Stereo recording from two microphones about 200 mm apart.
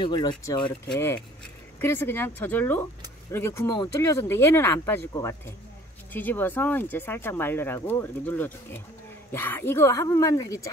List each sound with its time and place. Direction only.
0.0 s speech: 20° left (ahead or behind)
0.7 s speech: 10° left (ahead or behind)